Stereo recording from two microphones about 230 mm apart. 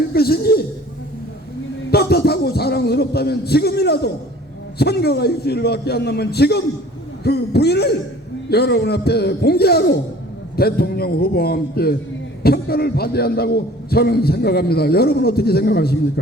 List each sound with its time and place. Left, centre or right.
0.1 s a man's voice: left
1.9 s a man's voice: left